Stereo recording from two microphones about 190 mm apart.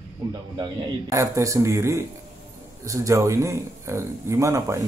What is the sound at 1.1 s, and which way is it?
Speech, 15° right (ahead or behind).